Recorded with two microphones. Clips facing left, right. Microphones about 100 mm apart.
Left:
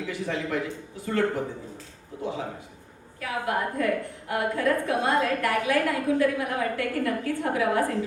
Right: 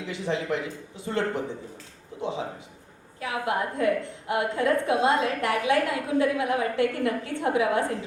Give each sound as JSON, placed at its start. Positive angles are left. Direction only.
{"t": 0.1, "sound": "a woman's voice", "side_deg": -20}
{"t": 3.2, "sound": "a woman's voice", "side_deg": -20}